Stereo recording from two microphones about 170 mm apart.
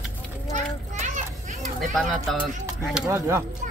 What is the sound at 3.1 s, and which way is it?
Speech, 15° right (ahead or behind).